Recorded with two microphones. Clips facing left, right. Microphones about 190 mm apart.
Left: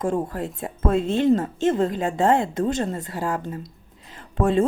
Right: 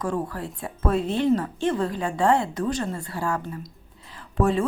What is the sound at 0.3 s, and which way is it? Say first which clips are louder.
Speech: left 4 dB; 20° left (ahead or behind).